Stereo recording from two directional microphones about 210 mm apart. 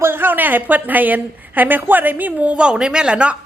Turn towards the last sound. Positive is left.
turn(degrees=-5)  # may be behind; listen again after turning